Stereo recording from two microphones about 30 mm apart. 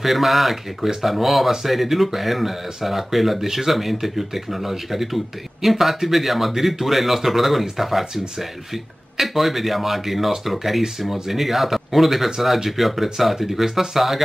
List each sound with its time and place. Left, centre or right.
0.0 s speech: centre
9.2 s speech: centre